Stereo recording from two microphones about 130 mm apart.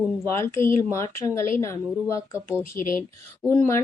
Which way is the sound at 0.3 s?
20° left (ahead or behind).